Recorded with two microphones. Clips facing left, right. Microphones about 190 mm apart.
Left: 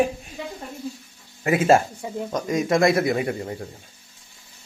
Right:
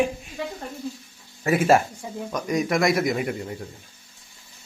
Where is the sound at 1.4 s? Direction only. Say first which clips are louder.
Left 1 dB; 25° left (ahead or behind).